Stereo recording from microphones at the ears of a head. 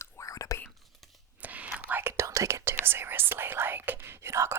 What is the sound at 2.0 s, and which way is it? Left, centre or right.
Whispering, right.